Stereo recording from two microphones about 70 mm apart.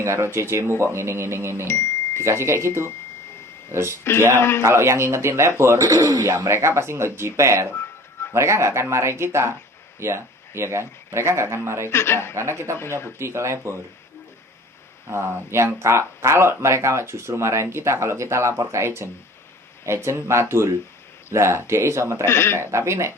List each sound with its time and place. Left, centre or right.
0.0 s speech: right
1.6 s a sound: left
2.2 s speech: right
4.4 s speech: left
4.6 s speech: right
5.8 s a man's voice: right
6.5 s speech: right
11.9 s speech: left
12.4 s speech: right
15.0 s speech: right
22.3 s speech: left
22.5 s speech: right